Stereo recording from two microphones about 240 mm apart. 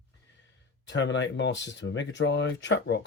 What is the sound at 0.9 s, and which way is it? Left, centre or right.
Speech, left.